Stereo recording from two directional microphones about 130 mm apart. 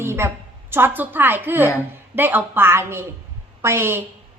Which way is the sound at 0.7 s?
15° right (ahead or behind).